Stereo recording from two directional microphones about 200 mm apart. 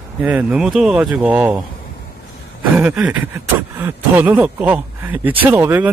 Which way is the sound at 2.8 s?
10° right (ahead or behind).